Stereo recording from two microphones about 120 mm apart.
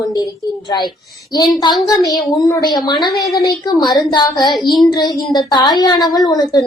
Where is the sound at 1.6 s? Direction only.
35° left (ahead or behind).